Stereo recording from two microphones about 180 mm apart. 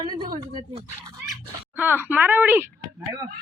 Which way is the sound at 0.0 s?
25° right (ahead or behind).